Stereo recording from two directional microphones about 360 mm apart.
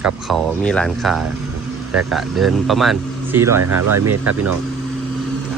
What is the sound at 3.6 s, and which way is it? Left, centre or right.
Speech, right.